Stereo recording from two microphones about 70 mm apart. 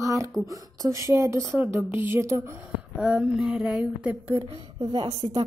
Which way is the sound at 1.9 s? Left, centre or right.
Right.